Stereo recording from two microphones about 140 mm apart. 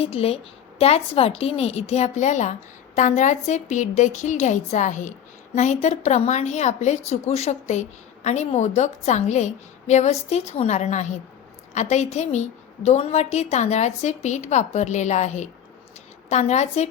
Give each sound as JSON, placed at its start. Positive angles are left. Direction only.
{"t": 0.0, "sound": "a woman's voice", "side_deg": 45}